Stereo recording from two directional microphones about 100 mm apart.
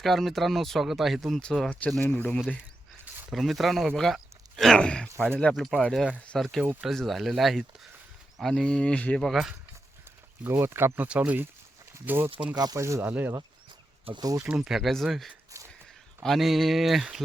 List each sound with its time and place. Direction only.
0.0 s speech: centre (ahead or behind)
2.0 s speech: 20° left (ahead or behind)
3.3 s speech: centre (ahead or behind)
10.4 s speech: 20° right (ahead or behind)
12.5 s speech: 35° right (ahead or behind)
13.1 s speech: 20° right (ahead or behind)
14.2 s speech: 35° right (ahead or behind)
14.4 s speech: 10° right (ahead or behind)